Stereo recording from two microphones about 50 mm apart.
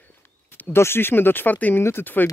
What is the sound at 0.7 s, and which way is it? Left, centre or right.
Speech, left.